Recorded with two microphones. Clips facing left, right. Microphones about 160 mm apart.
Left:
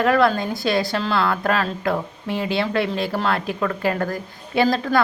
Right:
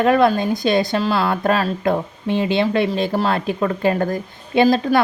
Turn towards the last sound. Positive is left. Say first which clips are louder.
# right 4 dB
turn(degrees=-20)  # may be behind; listen again after turning